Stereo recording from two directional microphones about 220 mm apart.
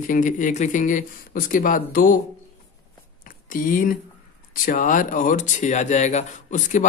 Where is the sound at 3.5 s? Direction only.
40° left (ahead or behind).